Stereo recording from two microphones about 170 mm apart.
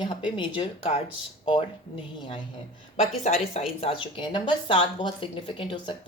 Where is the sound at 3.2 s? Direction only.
40° left (ahead or behind).